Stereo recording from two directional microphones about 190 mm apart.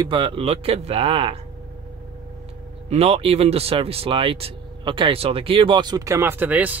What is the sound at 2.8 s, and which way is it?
Speech, 35° right (ahead or behind).